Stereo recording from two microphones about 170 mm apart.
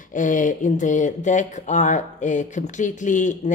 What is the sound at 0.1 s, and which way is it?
Speech, 50° left (ahead or behind).